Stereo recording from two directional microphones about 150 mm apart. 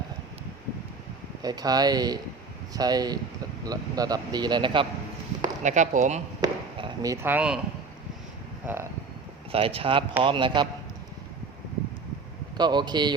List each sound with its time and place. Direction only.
1.4 s speech: 25° right (ahead or behind)
5.6 s speech: 55° right (ahead or behind)
6.4 s chop: 30° right (ahead or behind); by 7.6 s 10° right (ahead or behind)
8.6 s speech: 15° right (ahead or behind)
9.5 s speech: 40° right (ahead or behind)
12.5 s speech: 30° right (ahead or behind)